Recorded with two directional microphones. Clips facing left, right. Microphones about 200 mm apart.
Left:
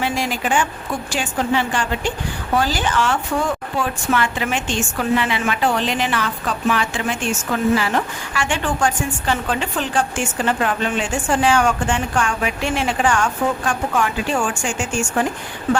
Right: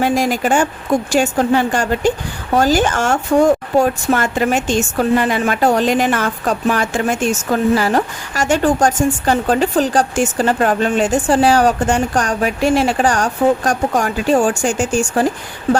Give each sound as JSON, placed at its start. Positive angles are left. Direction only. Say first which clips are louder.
{"t": 0.0, "sound": "a woman's voice", "louder": "right 7 dB", "side_deg": -45}